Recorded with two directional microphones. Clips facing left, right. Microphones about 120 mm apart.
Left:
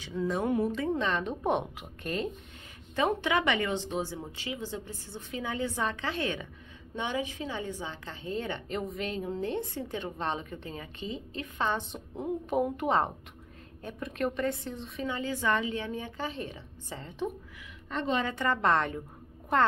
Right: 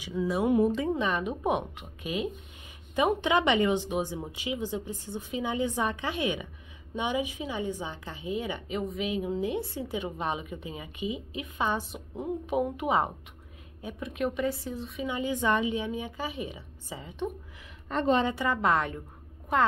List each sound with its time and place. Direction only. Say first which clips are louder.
0.0 s a woman's voice: right 2 dB; 5° right (ahead or behind)
3.0 s a woman's voice: right 3 dB; 15° right (ahead or behind)
15.0 s a woman's voice: right 2 dB; 15° right (ahead or behind)
17.8 s a woman's voice: right 5 dB; 40° right (ahead or behind)
18.3 s a woman's voice: even; 5° right (ahead or behind)